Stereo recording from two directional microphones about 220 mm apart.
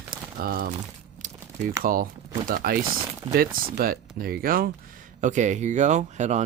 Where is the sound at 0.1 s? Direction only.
20° right (ahead or behind).